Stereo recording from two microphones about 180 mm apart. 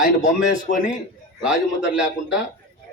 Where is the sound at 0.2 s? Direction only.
45° left (ahead or behind).